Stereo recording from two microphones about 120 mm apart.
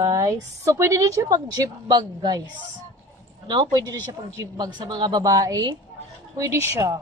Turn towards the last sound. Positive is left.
turn(degrees=-25)  # may be behind; listen again after turning